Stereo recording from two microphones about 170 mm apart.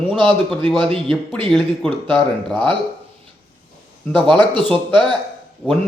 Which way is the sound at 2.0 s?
30° right (ahead or behind).